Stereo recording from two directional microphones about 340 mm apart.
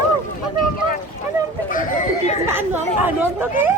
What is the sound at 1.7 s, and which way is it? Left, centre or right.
Chatter, left.